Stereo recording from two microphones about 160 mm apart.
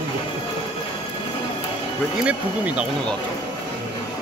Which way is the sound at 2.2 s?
5° right (ahead or behind).